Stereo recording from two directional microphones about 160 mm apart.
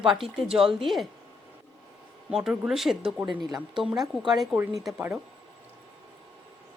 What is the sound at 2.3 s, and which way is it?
Speech, 5° right (ahead or behind).